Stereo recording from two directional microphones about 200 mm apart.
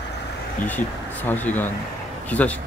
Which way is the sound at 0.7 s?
10° left (ahead or behind).